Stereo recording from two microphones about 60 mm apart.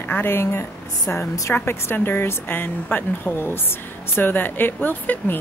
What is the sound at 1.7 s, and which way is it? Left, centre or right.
Speech, left.